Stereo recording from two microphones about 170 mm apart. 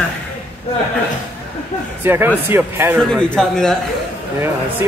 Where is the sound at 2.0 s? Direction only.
10° right (ahead or behind).